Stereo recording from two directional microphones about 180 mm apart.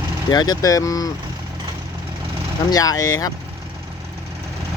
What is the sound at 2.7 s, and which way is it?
Speech, 20° left (ahead or behind).